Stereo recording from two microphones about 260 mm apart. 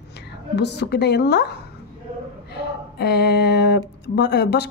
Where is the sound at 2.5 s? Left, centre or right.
Left.